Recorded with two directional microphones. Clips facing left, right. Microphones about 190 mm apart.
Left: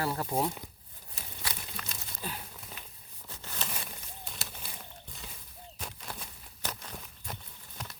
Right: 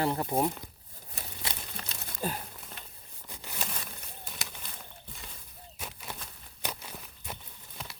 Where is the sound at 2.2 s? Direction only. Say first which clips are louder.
Right 7 dB; 45° right (ahead or behind).